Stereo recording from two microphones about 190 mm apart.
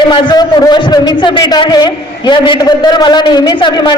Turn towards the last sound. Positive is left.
turn(degrees=25)  # may be behind; listen again after turning